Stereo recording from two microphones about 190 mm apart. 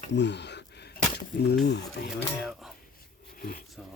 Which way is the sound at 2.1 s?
Centre (ahead or behind).